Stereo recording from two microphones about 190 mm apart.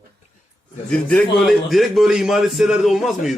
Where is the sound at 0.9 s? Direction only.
5° left (ahead or behind).